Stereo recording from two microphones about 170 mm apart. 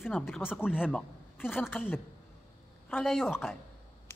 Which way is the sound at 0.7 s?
5° right (ahead or behind).